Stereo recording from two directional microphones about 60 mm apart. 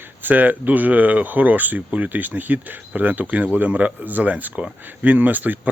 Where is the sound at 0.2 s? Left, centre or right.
Right.